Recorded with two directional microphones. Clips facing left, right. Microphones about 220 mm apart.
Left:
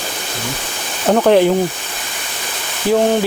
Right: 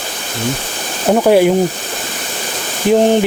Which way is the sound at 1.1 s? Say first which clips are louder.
Right 1 dB; 10° right (ahead or behind).